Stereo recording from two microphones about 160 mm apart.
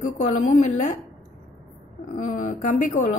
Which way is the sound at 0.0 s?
50° left (ahead or behind).